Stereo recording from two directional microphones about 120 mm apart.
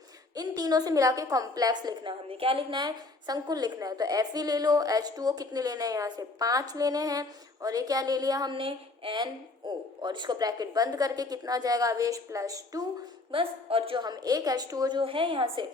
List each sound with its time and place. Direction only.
0.3 s a woman's voice: 30° right (ahead or behind)
2.3 s a woman's voice: 50° right (ahead or behind); by 8.5 s 30° right (ahead or behind)
8.5 s a woman's voice: 45° right (ahead or behind); by 12.8 s 30° right (ahead or behind)
13.3 s a woman's voice: 50° right (ahead or behind)